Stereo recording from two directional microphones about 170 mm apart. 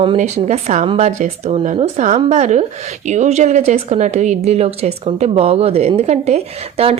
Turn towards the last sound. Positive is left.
turn(degrees=-40)  # may be behind; listen again after turning